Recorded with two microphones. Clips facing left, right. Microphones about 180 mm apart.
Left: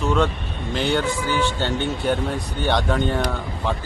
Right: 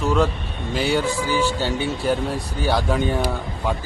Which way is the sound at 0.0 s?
5° right (ahead or behind).